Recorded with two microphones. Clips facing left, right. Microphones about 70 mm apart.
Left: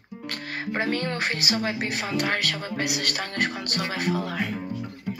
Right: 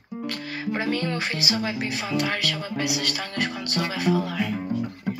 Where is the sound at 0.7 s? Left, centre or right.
Left.